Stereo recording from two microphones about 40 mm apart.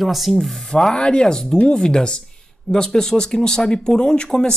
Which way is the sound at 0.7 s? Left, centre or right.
Centre.